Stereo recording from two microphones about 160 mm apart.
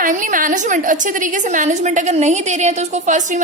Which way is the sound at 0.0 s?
55° right (ahead or behind).